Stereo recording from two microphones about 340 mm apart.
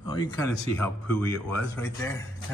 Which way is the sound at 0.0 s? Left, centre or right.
Centre.